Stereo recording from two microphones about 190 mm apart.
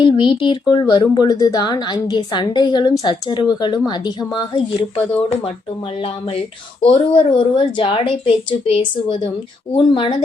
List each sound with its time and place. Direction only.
0.0 s a woman's voice: 25° left (ahead or behind)
6.8 s a woman's voice: 25° left (ahead or behind)